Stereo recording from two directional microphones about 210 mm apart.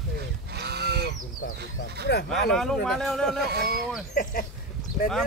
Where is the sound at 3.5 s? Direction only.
50° right (ahead or behind).